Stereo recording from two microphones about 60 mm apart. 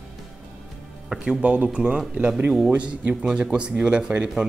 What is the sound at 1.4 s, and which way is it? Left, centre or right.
Speech, right.